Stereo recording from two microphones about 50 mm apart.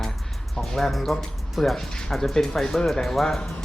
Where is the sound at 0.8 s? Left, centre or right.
Centre.